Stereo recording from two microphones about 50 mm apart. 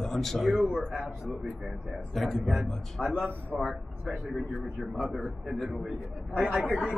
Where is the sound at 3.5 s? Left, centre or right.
Centre.